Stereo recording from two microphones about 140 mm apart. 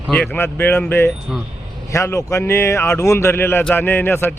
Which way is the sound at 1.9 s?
20° left (ahead or behind).